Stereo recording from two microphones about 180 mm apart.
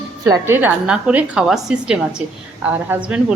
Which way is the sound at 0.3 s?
10° right (ahead or behind).